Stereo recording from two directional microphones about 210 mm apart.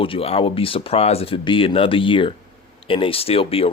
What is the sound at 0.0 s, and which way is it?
Speech, 25° left (ahead or behind).